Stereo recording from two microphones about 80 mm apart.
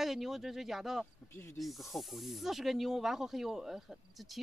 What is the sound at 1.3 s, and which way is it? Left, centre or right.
Speech, left.